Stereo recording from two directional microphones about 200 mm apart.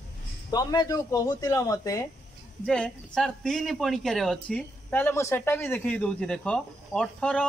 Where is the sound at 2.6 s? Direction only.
5° left (ahead or behind).